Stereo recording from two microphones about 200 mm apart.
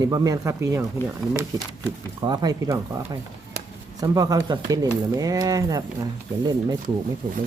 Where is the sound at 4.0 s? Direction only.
20° right (ahead or behind).